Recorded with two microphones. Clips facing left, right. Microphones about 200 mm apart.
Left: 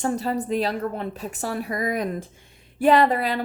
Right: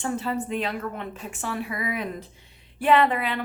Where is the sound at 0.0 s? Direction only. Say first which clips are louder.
Left 3 dB; 40° left (ahead or behind).